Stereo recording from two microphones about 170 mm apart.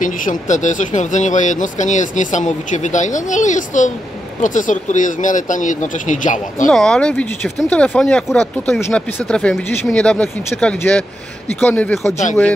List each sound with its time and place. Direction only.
0.0 s speech: 50° left (ahead or behind)
6.7 s speech: 5° left (ahead or behind)